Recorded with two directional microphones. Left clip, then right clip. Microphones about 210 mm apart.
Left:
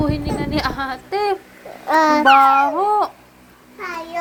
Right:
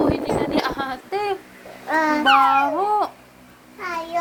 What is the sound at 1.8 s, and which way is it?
Babbling, 35° left (ahead or behind).